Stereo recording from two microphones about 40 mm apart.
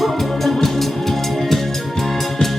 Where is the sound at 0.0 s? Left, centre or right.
Centre.